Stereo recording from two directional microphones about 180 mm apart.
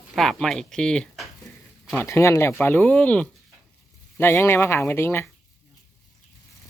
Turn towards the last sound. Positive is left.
turn(degrees=15)  # may be behind; listen again after turning